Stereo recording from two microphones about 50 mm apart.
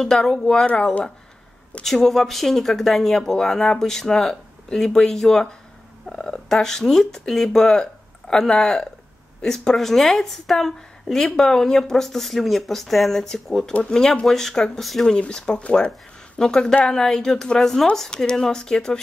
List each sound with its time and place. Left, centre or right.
0.0 s speech: centre
1.8 s speech: centre
15.0 s speech: centre